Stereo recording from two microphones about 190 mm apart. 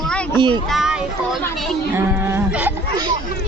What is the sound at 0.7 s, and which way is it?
A child's voice, 5° right (ahead or behind).